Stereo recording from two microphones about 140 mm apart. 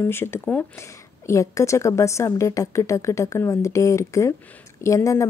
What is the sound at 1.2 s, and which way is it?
A woman's voice, 20° left (ahead or behind).